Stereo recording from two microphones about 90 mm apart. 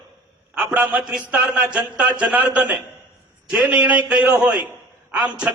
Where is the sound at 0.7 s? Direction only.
15° right (ahead or behind).